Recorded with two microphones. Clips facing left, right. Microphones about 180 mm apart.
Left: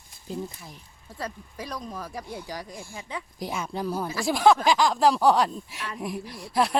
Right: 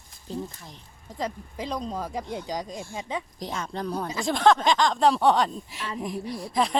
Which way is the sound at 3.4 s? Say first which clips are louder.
Left 1 dB; 10° left (ahead or behind).